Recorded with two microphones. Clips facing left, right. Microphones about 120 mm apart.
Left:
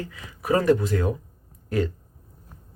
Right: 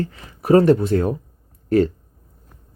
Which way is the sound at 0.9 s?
45° right (ahead or behind).